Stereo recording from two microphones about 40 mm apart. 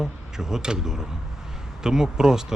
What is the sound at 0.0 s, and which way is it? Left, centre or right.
Speech, centre.